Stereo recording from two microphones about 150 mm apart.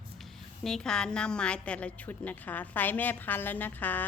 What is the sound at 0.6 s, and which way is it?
A woman's voice, 5° left (ahead or behind).